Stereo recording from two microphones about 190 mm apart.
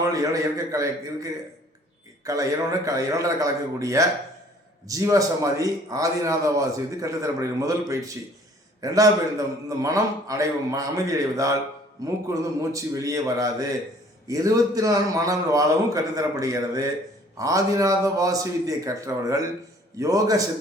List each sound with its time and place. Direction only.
0.0 s a man's voice: 20° right (ahead or behind)